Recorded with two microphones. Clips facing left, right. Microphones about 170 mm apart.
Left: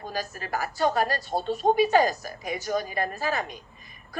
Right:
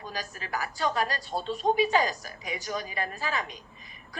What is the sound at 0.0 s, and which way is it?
A woman's voice, 50° left (ahead or behind).